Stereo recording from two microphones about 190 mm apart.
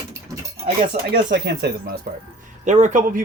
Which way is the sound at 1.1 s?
60° right (ahead or behind).